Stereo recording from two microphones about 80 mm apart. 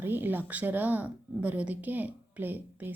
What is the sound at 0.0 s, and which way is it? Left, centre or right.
A woman's voice, right.